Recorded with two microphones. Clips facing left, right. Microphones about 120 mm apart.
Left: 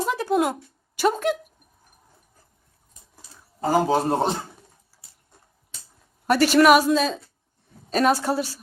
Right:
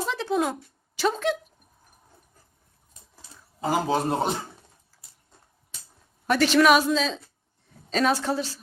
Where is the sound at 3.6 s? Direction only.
40° left (ahead or behind).